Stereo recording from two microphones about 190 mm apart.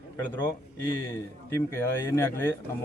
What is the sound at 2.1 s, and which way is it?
Speech, 10° left (ahead or behind).